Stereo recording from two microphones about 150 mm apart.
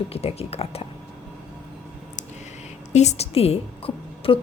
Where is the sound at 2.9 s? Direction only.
50° left (ahead or behind).